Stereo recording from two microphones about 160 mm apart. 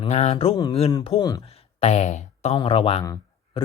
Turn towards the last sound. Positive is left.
turn(degrees=35)  # may be behind; listen again after turning